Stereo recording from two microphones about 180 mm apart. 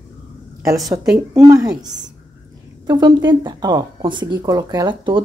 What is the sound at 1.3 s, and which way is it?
Speech, 20° right (ahead or behind).